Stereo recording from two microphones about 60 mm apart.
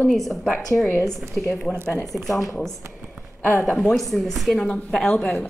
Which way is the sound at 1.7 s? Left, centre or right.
Centre.